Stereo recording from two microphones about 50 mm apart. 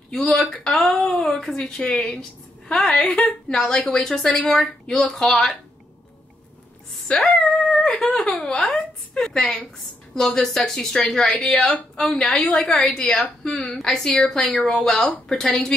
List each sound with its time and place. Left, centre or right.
0.1 s speech: centre
1.6 s a woman's voice: left
7.2 s a sound: centre
7.8 s a woman's voice: centre